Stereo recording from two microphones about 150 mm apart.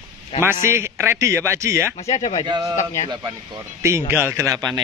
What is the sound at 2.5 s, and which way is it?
Speech, 25° right (ahead or behind).